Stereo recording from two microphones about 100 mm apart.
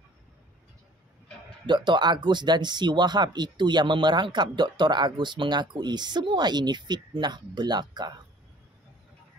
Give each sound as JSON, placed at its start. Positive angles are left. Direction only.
{"t": 1.7, "sound": "speech", "side_deg": -50}